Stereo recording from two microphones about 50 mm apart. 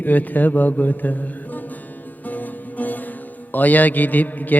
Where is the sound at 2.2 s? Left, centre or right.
Left.